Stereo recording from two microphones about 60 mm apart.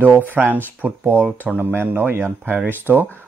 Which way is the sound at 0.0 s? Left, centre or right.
Right.